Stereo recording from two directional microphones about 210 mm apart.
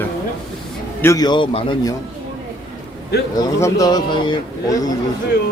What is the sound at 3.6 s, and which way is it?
A man's voice, 20° left (ahead or behind).